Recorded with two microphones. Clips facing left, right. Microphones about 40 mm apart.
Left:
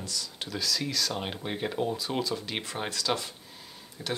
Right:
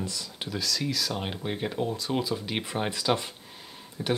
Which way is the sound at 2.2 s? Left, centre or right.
Centre.